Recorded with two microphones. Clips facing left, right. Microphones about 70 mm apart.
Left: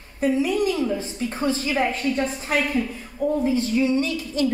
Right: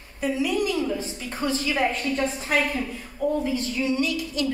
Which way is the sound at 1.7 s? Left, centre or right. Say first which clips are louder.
Left 2 dB; centre.